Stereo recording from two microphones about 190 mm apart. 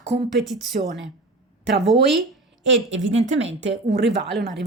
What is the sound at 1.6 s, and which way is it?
Speech, 70° right (ahead or behind).